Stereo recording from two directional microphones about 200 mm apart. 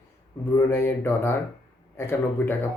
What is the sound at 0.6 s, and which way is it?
Speech, 10° left (ahead or behind).